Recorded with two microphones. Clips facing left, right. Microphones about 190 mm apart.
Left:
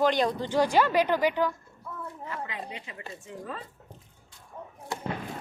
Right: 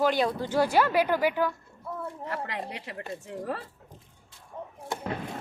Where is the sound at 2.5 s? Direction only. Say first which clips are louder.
Right 3 dB; 70° right (ahead or behind).